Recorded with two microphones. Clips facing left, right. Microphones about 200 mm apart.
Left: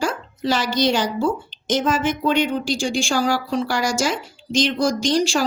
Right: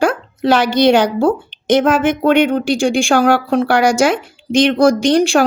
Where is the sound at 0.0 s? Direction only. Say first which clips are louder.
Right 8 dB; 60° right (ahead or behind).